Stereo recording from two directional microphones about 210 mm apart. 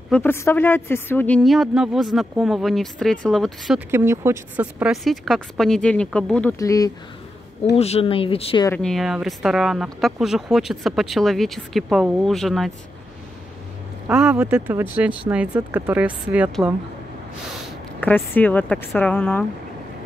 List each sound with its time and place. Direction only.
0.1 s speech: 10° left (ahead or behind)
3.9 s speech: 10° right (ahead or behind); by 6.5 s 5° left (ahead or behind)
6.6 s speech: 15° left (ahead or behind)
7.7 s speech: 30° left (ahead or behind)
8.6 s speech: 5° left (ahead or behind)
14.0 s speech: 5° right (ahead or behind)
18.0 s speech: 10° left (ahead or behind)